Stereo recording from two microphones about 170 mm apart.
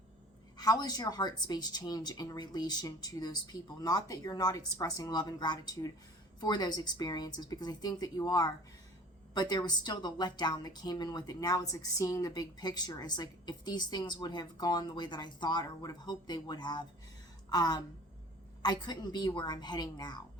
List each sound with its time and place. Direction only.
0.5 s a woman's voice: 20° left (ahead or behind)